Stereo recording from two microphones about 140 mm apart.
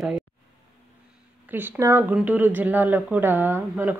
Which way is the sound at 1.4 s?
15° right (ahead or behind).